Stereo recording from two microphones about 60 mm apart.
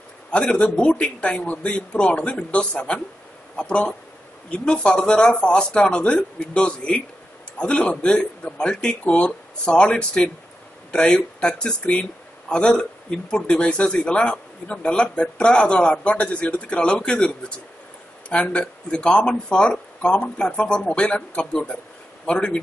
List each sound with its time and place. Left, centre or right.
0.3 s a man's voice: centre